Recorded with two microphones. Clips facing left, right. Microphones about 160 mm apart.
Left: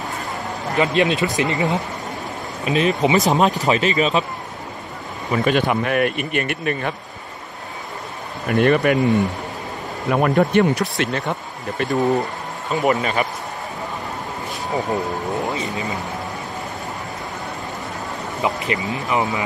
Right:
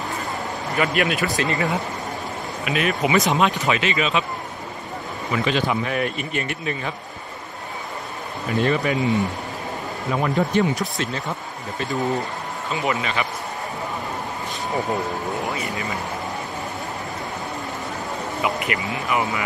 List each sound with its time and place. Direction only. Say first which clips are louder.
0.7 s speech: left 4 dB; 25° left (ahead or behind)
2.6 s speech: left 5 dB; 35° left (ahead or behind)
2.9 s speech: left 2 dB; 25° left (ahead or behind)
3.3 s speech: left 3 dB; 40° left (ahead or behind)
5.3 s speech: left 4 dB; 50° left (ahead or behind)
8.5 s speech: left 5 dB; 60° left (ahead or behind)
12.6 s speech: left 6 dB; 40° left (ahead or behind)
14.8 s speech: left 2 dB; centre (ahead or behind)
15.5 s speech: left 2 dB; 20° left (ahead or behind)
18.7 s speech: left 2 dB; 25° left (ahead or behind)